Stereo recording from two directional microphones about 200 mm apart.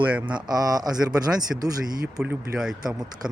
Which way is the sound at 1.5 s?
5° right (ahead or behind).